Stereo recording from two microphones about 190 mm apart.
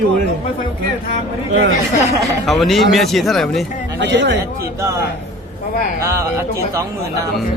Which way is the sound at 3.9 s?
65° right (ahead or behind).